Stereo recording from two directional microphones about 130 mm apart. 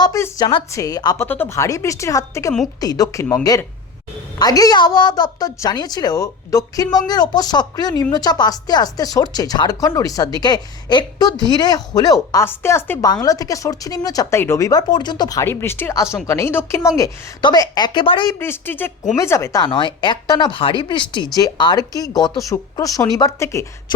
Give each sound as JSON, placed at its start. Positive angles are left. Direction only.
{"t": 0.0, "sound": "a woman's voice", "side_deg": 25}
{"t": 1.3, "sound": "a woman's voice", "side_deg": 15}
{"t": 15.4, "sound": "speech", "side_deg": 15}
{"t": 18.3, "sound": "speech", "side_deg": 20}
{"t": 19.6, "sound": "a woman's voice", "side_deg": 35}